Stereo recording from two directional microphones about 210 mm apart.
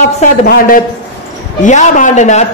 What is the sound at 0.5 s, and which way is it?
A man's voice, 40° left (ahead or behind).